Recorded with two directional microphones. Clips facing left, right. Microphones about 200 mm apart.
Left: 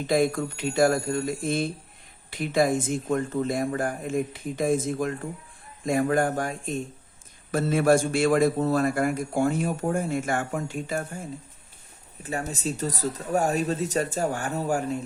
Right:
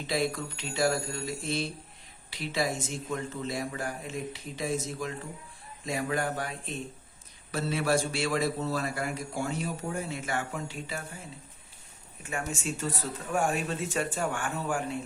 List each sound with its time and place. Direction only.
0.1 s a man's voice: 50° left (ahead or behind)
12.2 s speech: 35° left (ahead or behind)